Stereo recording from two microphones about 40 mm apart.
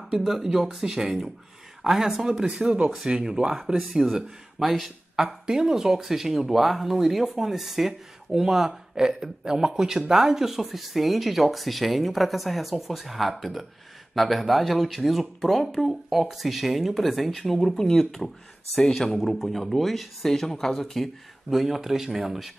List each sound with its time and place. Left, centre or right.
0.1 s speech: centre
2.3 s speech: right
3.5 s speech: centre